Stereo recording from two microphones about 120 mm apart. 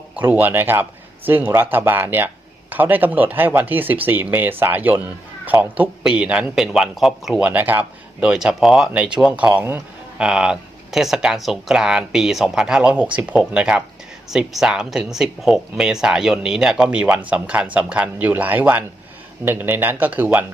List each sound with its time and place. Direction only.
0.2 s speech: 15° right (ahead or behind)